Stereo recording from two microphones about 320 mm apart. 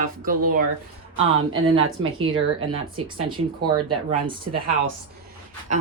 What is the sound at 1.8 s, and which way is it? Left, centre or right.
Speech, right.